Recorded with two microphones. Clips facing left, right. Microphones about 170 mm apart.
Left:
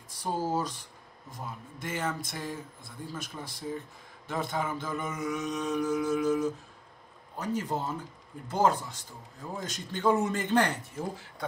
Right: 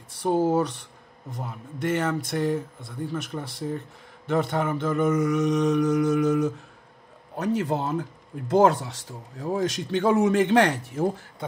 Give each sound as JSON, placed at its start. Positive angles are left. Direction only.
{"t": 0.2, "sound": "speech", "side_deg": -60}
{"t": 7.3, "sound": "speech", "side_deg": -85}